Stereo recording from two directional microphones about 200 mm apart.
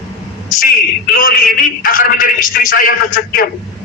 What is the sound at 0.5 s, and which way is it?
A man's voice, 45° left (ahead or behind).